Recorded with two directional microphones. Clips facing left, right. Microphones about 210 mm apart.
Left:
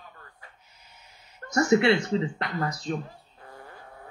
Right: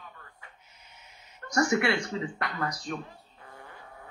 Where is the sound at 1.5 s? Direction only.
25° left (ahead or behind).